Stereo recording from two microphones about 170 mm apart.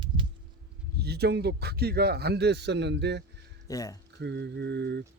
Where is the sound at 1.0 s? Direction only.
70° right (ahead or behind); by 3.2 s 90° right.